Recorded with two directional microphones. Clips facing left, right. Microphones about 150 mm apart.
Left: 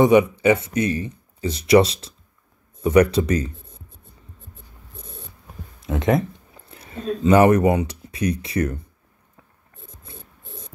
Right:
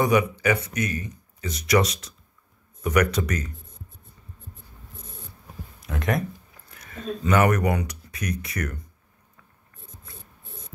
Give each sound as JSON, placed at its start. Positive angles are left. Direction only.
{"t": 0.0, "sound": "speech", "side_deg": 25}
{"t": 5.8, "sound": "speech", "side_deg": 25}
{"t": 6.5, "sound": "a sound", "side_deg": 25}
{"t": 7.2, "sound": "speech", "side_deg": 30}